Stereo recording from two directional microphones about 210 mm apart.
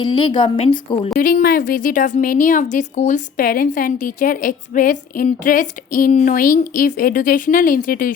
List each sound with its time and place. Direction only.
0.0 s a woman's voice: 20° left (ahead or behind)
1.2 s a woman's voice: 45° left (ahead or behind)